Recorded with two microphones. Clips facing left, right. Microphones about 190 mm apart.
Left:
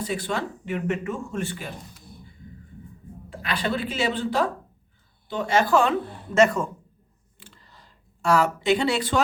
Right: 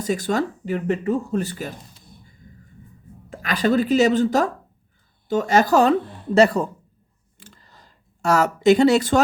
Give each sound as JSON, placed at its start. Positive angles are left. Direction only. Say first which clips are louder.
{"t": 0.0, "sound": "speech", "louder": "right 6 dB", "side_deg": -40}
{"t": 3.2, "sound": "a woman's voice", "louder": "right 7 dB", "side_deg": -40}
{"t": 7.3, "sound": "a sound", "louder": "right 2 dB", "side_deg": -45}